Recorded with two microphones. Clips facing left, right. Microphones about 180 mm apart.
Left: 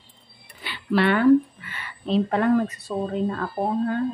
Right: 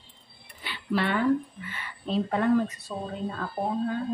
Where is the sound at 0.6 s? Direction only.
80° left.